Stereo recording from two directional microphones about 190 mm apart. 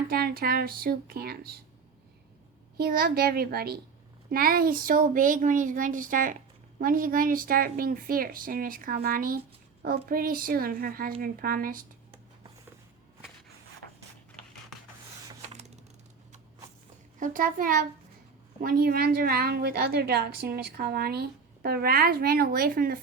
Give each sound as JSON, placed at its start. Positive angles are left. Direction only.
{"t": 0.1, "sound": "a woman's voice", "side_deg": -50}
{"t": 2.7, "sound": "a woman's voice", "side_deg": -55}
{"t": 15.4, "sound": "a sound", "side_deg": -35}
{"t": 17.2, "sound": "a woman's voice", "side_deg": -45}